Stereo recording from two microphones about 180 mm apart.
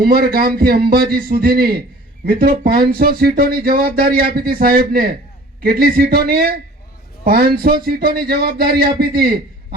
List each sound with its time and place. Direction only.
0.0 s speech: 60° right (ahead or behind)